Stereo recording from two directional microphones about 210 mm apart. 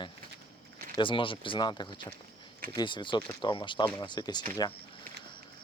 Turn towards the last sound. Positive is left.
turn(degrees=20)  # may be behind; listen again after turning